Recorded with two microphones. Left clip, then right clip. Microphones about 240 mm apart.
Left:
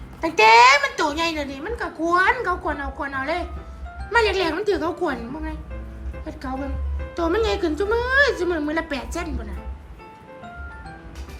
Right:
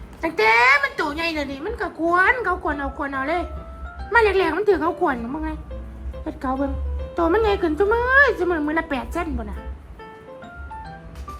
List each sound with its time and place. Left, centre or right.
0.2 s a woman's voice: centre
7.2 s a woman's voice: centre